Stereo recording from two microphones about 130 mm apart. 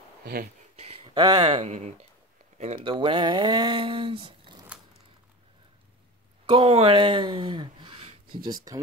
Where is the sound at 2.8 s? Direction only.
40° right (ahead or behind).